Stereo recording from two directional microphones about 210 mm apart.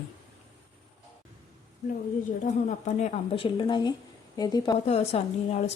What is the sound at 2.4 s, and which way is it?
A woman's voice, 35° left (ahead or behind).